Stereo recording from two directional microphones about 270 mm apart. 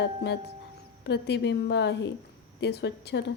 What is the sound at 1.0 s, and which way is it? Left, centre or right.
A woman's voice, left.